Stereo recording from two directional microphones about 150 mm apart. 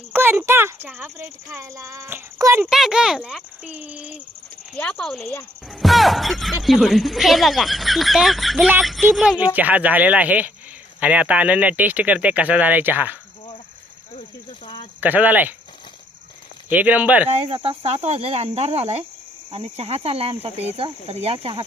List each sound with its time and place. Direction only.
0.1 s a child's voice: 15° right (ahead or behind)
2.6 s a child's voice: 5° right (ahead or behind)
4.8 s a child's voice: 5° left (ahead or behind); by 13.1 s 10° right (ahead or behind)
15.0 s a child's voice: 10° right (ahead or behind)
16.6 s a child's voice: 10° right (ahead or behind)
17.2 s speech: 45° right (ahead or behind)